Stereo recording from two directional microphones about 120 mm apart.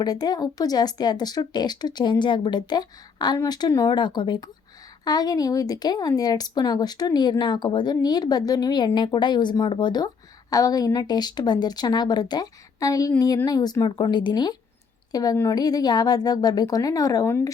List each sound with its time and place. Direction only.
0.0 s a woman's voice: 35° left (ahead or behind)